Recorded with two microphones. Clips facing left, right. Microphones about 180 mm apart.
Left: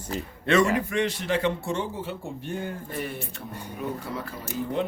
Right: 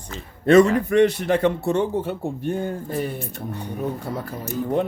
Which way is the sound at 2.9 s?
35° right (ahead or behind).